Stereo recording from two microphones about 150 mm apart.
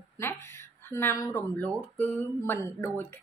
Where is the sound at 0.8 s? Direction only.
15° left (ahead or behind).